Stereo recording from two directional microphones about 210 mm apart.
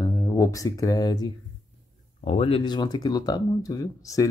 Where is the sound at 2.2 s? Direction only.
30° left (ahead or behind).